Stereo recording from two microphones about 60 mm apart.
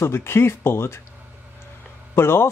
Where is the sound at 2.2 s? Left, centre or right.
Left.